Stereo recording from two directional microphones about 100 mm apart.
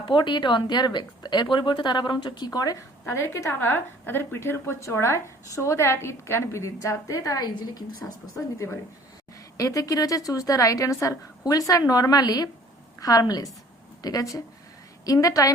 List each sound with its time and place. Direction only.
0.0 s a woman's voice: 50° left (ahead or behind); by 7.9 s 35° left (ahead or behind)
9.6 s a woman's voice: 35° left (ahead or behind)